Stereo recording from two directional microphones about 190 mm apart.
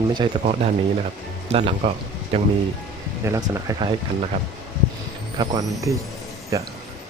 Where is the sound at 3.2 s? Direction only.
15° right (ahead or behind).